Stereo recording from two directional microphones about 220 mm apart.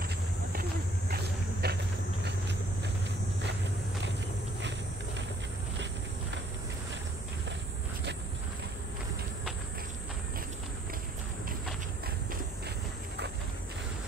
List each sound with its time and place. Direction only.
1.1 s vehicle: 45° right (ahead or behind)